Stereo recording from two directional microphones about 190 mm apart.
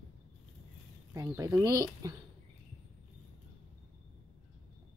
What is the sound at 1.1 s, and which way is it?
Speech, 20° right (ahead or behind).